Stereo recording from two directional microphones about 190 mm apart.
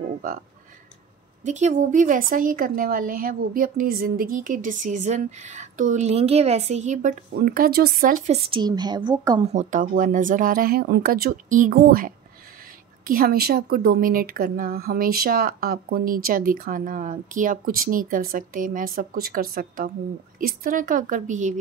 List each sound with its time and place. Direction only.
1.4 s speech: 40° right (ahead or behind)
8.5 s speech: 25° right (ahead or behind)
9.4 s speech: 35° right (ahead or behind)